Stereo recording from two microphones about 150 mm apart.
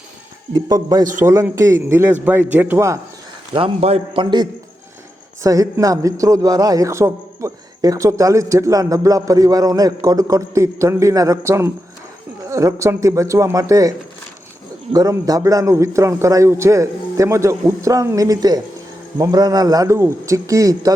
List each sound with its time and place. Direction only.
0.5 s a man's voice: 25° right (ahead or behind)
3.5 s a man's voice: 40° right (ahead or behind)
5.4 s a man's voice: 20° right (ahead or behind)
14.9 s a man's voice: 25° right (ahead or behind)